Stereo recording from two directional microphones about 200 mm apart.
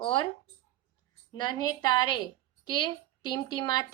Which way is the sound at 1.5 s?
90° right.